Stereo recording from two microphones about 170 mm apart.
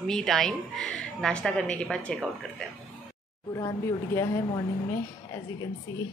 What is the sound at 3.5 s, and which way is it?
Speech, 15° left (ahead or behind).